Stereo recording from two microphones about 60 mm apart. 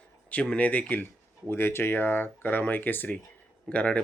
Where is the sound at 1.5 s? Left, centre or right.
Left.